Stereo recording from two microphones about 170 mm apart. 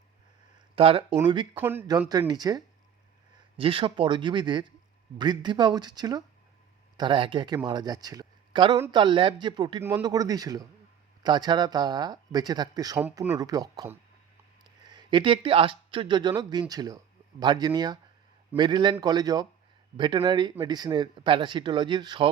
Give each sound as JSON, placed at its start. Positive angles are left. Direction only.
{"t": 0.8, "sound": "speech", "side_deg": -35}
{"t": 1.5, "sound": "speech", "side_deg": -10}
{"t": 1.9, "sound": "speech", "side_deg": -25}